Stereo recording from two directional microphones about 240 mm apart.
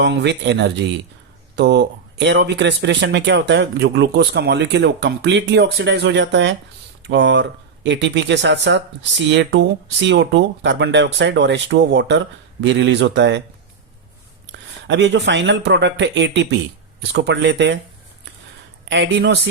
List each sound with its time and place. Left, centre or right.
0.0 s speech: right
14.8 s speech: right
18.9 s speech: right